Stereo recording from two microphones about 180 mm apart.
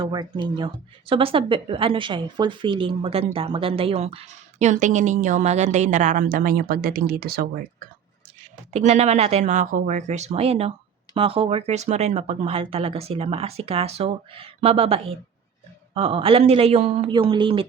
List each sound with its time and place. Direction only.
0.0 s a woman's voice: 25° right (ahead or behind); by 7.4 s 55° right (ahead or behind)
8.7 s a woman's voice: 40° right (ahead or behind)